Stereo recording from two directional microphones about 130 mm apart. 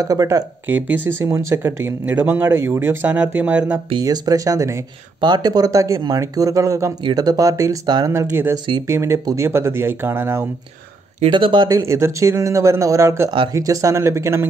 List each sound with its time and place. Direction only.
0.0 s speech: 25° right (ahead or behind)
0.7 s speech: 15° right (ahead or behind)
4.0 s speech: 30° right (ahead or behind)
11.2 s speech: 40° right (ahead or behind)
11.9 s speech: 20° right (ahead or behind)